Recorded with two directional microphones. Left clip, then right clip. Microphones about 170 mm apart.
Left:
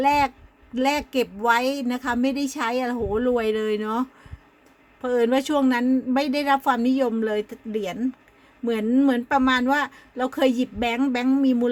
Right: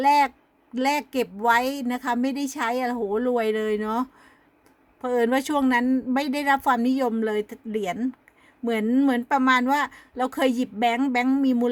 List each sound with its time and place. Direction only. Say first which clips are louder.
0.0 s a woman's voice: right 1 dB; 15° right (ahead or behind)